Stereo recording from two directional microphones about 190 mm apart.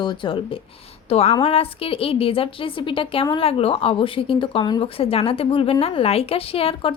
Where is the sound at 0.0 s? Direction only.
25° left (ahead or behind).